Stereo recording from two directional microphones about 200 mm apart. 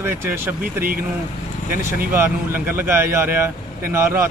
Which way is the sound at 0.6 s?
45° right (ahead or behind).